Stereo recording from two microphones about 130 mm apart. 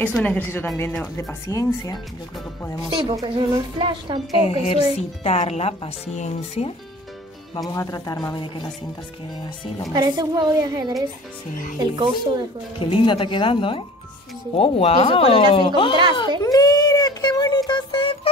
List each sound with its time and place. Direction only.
0.0 s a woman's voice: 10° left (ahead or behind)
1.5 s speech: 30° left (ahead or behind)
2.9 s a woman's voice: 35° right (ahead or behind)
4.5 s speech: 50° left (ahead or behind)
7.5 s speech: 30° left (ahead or behind)
9.9 s a woman's voice: 30° right (ahead or behind)
12.7 s speech: 40° left (ahead or behind)
16.4 s speech: 30° left (ahead or behind)